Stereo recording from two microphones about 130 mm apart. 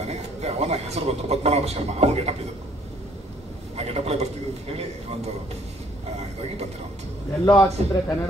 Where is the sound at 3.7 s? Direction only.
55° right (ahead or behind).